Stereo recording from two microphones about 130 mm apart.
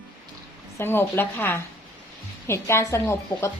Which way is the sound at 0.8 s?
15° left (ahead or behind).